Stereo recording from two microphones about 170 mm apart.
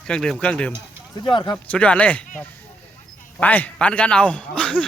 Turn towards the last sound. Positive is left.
turn(degrees=5)  # may be behind; listen again after turning